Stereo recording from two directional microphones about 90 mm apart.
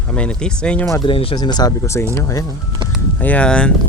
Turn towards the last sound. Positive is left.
turn(degrees=10)  # may be behind; listen again after turning